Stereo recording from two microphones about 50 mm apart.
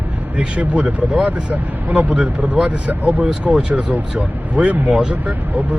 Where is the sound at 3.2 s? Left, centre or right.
Right.